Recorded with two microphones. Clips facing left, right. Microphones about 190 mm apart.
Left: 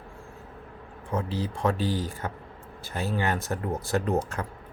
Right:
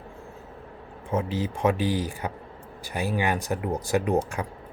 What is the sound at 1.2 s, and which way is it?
Speech, 20° right (ahead or behind).